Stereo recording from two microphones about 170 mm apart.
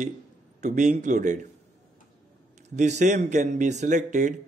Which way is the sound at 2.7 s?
45° right (ahead or behind).